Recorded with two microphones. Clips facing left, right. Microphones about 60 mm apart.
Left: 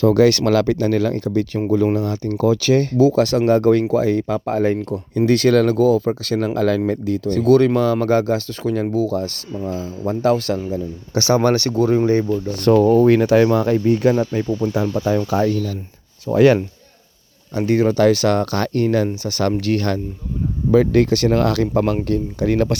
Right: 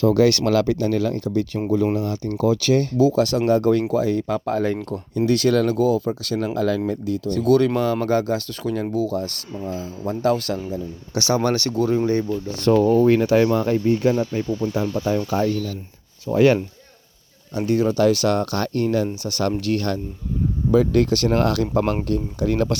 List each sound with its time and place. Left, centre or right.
0.0 s a man's voice: left
5.1 s speech: left
10.1 s a man's voice: left
12.3 s speech: left
16.3 s speech: left
17.6 s a man's voice: left
18.1 s speech: left
19.0 s speech: left
20.7 s speech: left